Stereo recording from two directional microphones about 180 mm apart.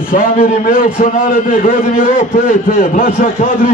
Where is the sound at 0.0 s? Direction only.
50° left (ahead or behind).